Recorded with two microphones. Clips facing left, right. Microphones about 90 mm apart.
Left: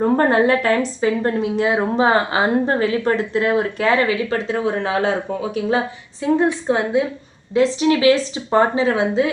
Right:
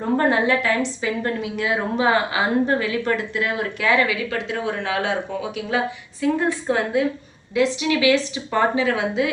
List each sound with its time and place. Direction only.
0.0 s speech: 45° left (ahead or behind)
1.2 s speech: 30° left (ahead or behind)
6.2 s a woman's voice: 20° left (ahead or behind)
7.5 s speech: 35° left (ahead or behind)